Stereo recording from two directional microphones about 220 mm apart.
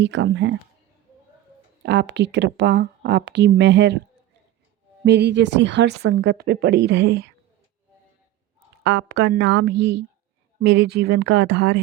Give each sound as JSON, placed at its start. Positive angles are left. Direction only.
{"t": 0.0, "sound": "speech", "side_deg": -55}
{"t": 1.8, "sound": "speech", "side_deg": -55}
{"t": 5.0, "sound": "speech", "side_deg": -50}
{"t": 8.8, "sound": "speech", "side_deg": -50}